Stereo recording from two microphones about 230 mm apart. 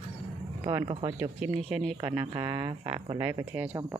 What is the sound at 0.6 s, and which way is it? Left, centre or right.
Speech, right.